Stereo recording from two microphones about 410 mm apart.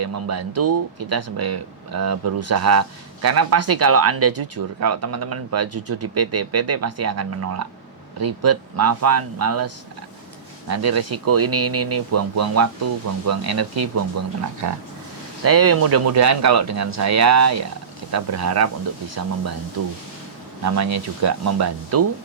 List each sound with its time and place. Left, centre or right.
0.0 s speech: right
20.7 s speech: right